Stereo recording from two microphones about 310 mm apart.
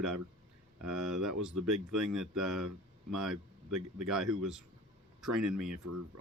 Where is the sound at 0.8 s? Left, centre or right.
Right.